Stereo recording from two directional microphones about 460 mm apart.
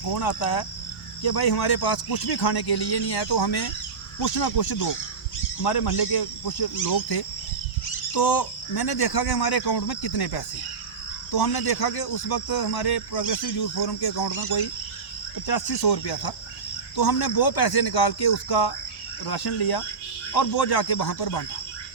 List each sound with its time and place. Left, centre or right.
0.0 s speech: left
15.4 s speech: left